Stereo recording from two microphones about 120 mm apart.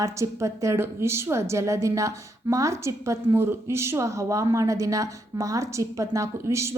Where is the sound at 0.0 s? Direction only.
25° right (ahead or behind).